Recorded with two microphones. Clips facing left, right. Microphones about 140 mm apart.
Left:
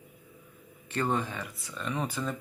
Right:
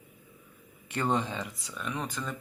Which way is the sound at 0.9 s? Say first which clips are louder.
Right 1 dB; 15° right (ahead or behind).